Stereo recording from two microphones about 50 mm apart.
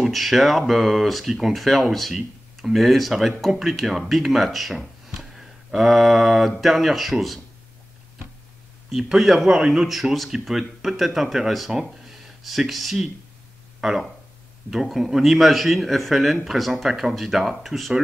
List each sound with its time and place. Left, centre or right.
0.0 s speech: centre
8.9 s speech: centre